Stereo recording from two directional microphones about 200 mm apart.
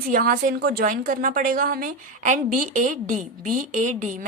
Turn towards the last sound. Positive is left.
turn(degrees=-40)  # may be behind; listen again after turning